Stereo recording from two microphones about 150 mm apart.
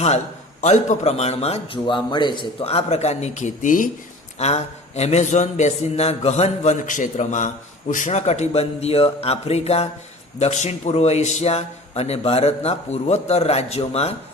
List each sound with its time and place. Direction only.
0.6 s a man's voice: 50° left (ahead or behind)
4.4 s a man's voice: 45° left (ahead or behind)